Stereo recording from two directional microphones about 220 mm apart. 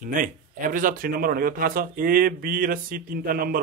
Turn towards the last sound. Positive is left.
turn(degrees=-40)  # may be behind; listen again after turning